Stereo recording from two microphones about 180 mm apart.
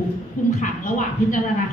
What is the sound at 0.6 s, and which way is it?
Speech, 45° left (ahead or behind).